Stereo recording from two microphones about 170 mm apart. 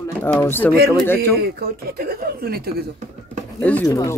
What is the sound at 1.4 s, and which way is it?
Speech, 65° right (ahead or behind).